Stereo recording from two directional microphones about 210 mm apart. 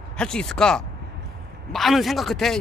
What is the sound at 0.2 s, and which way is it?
Speech, 5° left (ahead or behind).